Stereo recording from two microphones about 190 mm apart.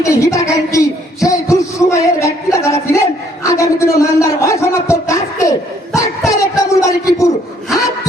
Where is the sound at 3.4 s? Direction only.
15° left (ahead or behind).